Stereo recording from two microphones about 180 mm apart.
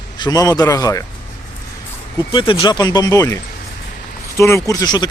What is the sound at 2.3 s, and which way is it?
Speech, 30° left (ahead or behind).